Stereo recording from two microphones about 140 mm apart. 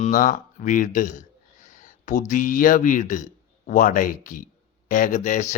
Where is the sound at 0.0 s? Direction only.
70° left (ahead or behind).